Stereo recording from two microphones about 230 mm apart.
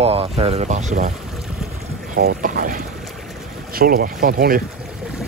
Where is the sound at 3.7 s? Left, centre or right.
Right.